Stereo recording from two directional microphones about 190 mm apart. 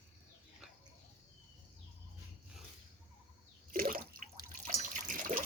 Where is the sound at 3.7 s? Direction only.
50° right (ahead or behind).